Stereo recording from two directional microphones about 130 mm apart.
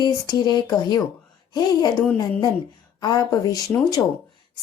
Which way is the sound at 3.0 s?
30° left (ahead or behind).